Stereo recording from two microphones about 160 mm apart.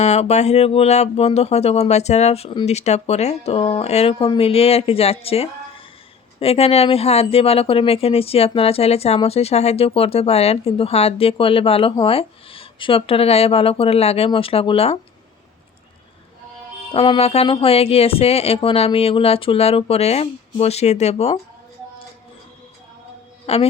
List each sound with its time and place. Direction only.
0.0 s speech: 45° left (ahead or behind)
16.9 s speech: 35° left (ahead or behind)
23.5 s speech: 40° left (ahead or behind)